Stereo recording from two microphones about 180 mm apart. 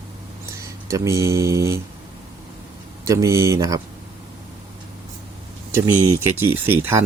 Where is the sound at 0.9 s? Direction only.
15° right (ahead or behind).